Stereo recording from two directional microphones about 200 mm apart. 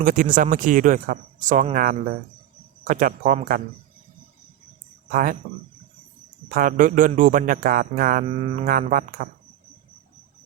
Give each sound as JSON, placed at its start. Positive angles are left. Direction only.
{"t": 0.0, "sound": "speech", "side_deg": -40}
{"t": 5.1, "sound": "speech", "side_deg": -45}
{"t": 6.5, "sound": "speech", "side_deg": -45}
{"t": 8.4, "sound": "speech", "side_deg": -30}
{"t": 8.6, "sound": "speech", "side_deg": -45}